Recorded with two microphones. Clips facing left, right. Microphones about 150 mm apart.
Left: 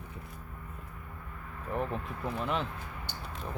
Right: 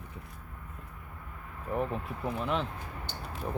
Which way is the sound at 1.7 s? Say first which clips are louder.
Right 2 dB; centre (ahead or behind).